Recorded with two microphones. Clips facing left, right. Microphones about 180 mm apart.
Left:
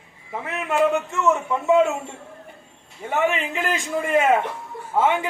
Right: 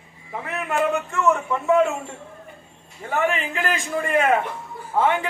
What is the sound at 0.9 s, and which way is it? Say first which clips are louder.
A man's voice: even; 25° left (ahead or behind).